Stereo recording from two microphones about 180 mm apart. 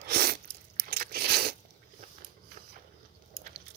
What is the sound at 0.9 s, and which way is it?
Crunch, 60° right (ahead or behind).